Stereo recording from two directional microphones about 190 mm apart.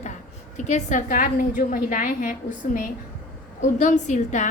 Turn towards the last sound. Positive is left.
turn(degrees=40)  # may be behind; listen again after turning